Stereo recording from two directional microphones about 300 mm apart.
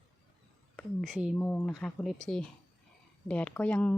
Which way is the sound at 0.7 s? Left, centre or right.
Centre.